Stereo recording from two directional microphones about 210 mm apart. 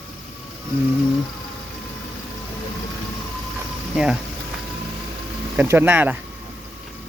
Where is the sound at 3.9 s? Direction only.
5° right (ahead or behind).